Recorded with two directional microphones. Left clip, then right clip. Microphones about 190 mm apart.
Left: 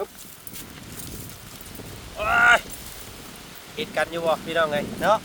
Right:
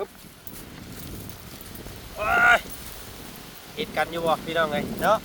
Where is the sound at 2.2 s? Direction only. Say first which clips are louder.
Left 1 dB; 5° left (ahead or behind).